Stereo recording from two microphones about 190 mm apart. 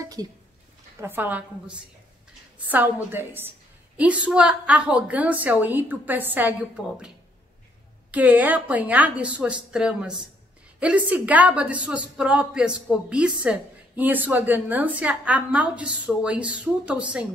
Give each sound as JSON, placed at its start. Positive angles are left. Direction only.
{"t": 0.0, "sound": "a sound", "side_deg": -20}
{"t": 1.0, "sound": "a woman's voice", "side_deg": -10}
{"t": 2.6, "sound": "a woman's voice", "side_deg": -10}
{"t": 8.1, "sound": "a woman's voice", "side_deg": -10}